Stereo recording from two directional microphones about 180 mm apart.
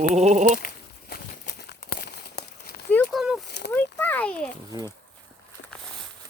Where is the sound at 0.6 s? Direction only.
55° left (ahead or behind).